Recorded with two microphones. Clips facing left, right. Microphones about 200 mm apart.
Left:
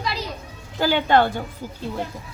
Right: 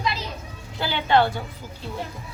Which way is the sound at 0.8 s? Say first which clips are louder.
Left 3 dB; 45° left (ahead or behind).